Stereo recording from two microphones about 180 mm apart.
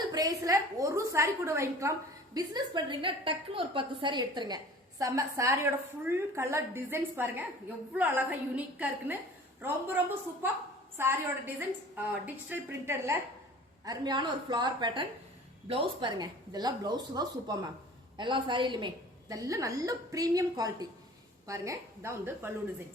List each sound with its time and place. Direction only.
0.1 s a woman's voice: 20° right (ahead or behind)